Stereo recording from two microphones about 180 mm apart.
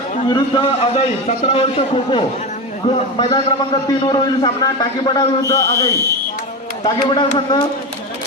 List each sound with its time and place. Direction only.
0.3 s a man's voice: 25° left (ahead or behind)
6.8 s a man's voice: 25° left (ahead or behind)